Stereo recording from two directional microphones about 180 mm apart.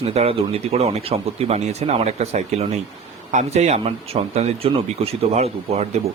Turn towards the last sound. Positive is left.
turn(degrees=-35)  # may be behind; listen again after turning